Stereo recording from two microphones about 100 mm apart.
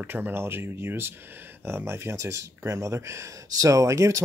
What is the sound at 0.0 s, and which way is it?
Speech, 20° right (ahead or behind).